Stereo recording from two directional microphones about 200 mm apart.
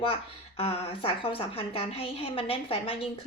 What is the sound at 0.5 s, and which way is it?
Speech, 30° left (ahead or behind).